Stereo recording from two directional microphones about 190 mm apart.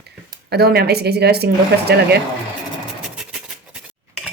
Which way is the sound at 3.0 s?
5° right (ahead or behind).